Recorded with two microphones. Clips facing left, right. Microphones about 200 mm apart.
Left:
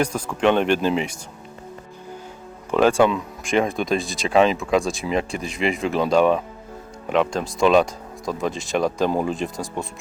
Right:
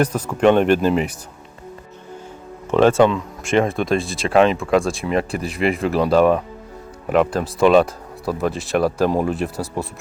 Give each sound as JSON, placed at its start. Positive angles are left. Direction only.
{"t": 0.0, "sound": "speech", "side_deg": -5}
{"t": 2.6, "sound": "speech", "side_deg": 0}